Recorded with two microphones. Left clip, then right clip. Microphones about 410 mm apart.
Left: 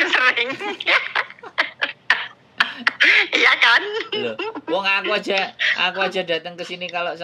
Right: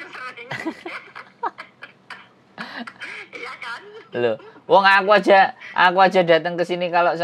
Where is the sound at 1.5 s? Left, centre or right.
Left.